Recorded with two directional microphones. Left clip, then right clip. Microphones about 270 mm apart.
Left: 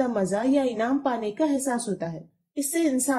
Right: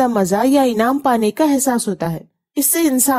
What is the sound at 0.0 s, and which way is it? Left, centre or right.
A woman's voice, right.